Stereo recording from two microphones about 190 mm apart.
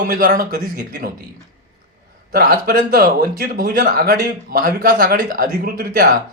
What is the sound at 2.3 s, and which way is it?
A man's voice, 50° right (ahead or behind).